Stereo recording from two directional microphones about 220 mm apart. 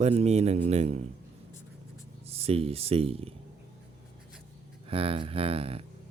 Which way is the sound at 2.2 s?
25° right (ahead or behind).